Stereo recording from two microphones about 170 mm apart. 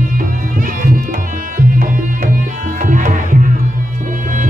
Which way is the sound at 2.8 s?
50° right (ahead or behind).